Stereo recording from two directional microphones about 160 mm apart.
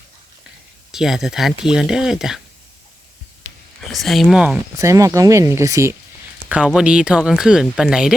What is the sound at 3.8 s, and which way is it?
Speech, centre (ahead or behind).